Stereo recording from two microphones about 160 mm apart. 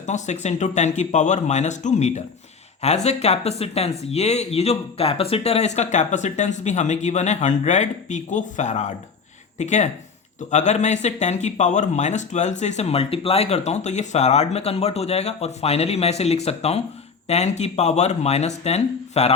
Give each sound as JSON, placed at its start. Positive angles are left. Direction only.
{"t": 0.0, "sound": "speech", "side_deg": 45}